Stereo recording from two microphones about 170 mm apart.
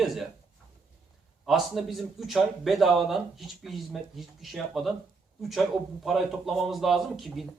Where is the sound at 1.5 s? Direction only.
Centre (ahead or behind).